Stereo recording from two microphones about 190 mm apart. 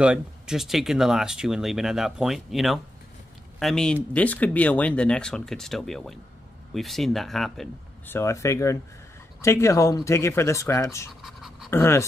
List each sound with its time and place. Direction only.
0.0 s speech: 5° right (ahead or behind)
8.2 s speech: 15° left (ahead or behind)
11.2 s pant: centre (ahead or behind)
11.7 s speech: 10° left (ahead or behind)